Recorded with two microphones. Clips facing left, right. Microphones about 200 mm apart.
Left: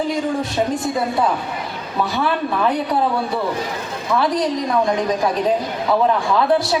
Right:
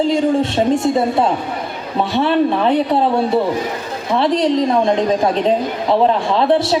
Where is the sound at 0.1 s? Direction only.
25° right (ahead or behind).